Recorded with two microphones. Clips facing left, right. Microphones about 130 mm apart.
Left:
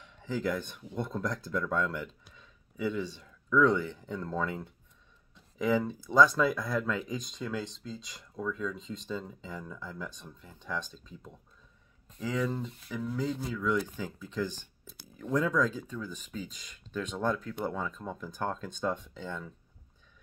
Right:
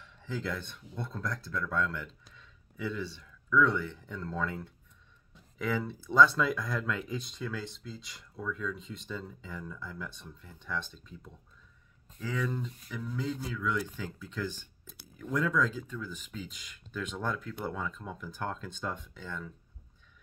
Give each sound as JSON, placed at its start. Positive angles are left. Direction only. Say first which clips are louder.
{"t": 0.0, "sound": "speech", "louder": "left 5 dB", "side_deg": 15}